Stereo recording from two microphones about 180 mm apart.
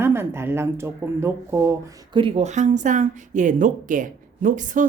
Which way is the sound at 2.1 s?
30° right (ahead or behind).